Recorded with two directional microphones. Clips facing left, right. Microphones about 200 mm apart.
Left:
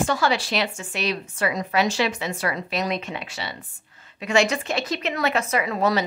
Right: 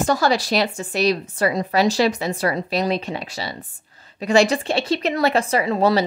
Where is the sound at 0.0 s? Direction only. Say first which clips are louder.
Right 3 dB; 40° right (ahead or behind).